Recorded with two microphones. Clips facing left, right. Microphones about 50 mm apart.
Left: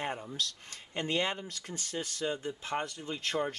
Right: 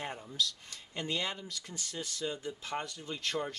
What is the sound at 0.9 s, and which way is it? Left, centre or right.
Speech, left.